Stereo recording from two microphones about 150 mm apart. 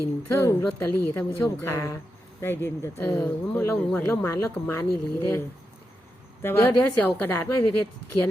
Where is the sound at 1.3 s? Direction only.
20° left (ahead or behind).